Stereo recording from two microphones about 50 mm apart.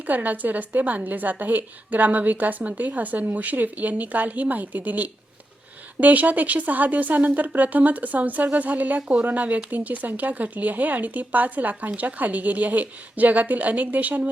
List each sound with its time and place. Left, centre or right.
0.1 s a woman's voice: right